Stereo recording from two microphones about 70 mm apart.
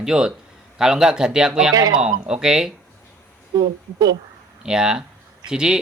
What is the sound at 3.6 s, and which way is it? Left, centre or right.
Speech, right.